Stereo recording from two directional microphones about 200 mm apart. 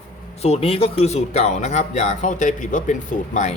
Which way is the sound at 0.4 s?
30° left (ahead or behind).